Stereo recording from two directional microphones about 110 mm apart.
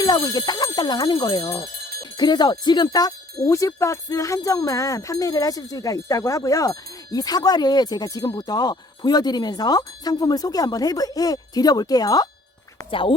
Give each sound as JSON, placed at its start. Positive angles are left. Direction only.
{"t": 0.3, "sound": "speech", "side_deg": 35}
{"t": 2.0, "sound": "speech", "side_deg": 35}
{"t": 12.9, "sound": "speech", "side_deg": 50}